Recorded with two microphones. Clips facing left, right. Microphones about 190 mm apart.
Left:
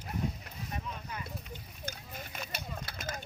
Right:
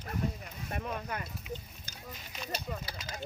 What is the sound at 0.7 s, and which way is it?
Speech, 60° right (ahead or behind).